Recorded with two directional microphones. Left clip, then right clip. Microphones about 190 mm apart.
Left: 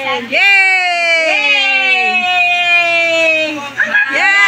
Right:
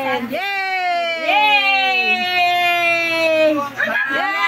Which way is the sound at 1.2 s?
65° right (ahead or behind).